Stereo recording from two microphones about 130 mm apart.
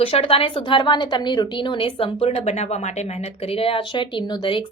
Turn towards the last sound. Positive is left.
turn(degrees=35)  # may be behind; listen again after turning